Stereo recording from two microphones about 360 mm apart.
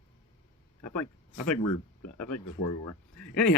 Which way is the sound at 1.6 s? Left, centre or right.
Left.